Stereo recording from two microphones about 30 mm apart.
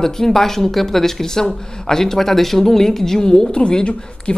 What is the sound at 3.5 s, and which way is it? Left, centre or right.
Speech, left.